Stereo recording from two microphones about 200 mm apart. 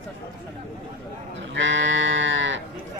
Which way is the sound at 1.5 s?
70° right (ahead or behind).